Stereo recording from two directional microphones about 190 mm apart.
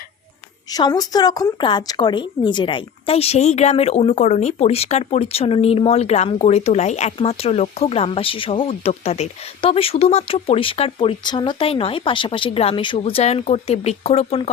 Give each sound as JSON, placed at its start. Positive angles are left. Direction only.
{"t": 0.7, "sound": "a woman's voice", "side_deg": 20}